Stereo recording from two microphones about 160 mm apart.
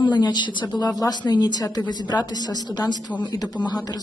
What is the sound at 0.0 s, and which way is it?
A woman's voice, 25° left (ahead or behind).